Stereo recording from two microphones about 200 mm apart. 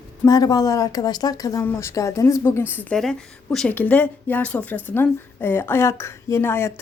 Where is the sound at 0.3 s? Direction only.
20° left (ahead or behind).